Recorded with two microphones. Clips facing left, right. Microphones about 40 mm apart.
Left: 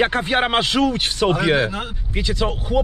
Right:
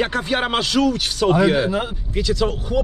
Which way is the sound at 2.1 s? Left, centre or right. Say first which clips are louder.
Right 2 dB; left.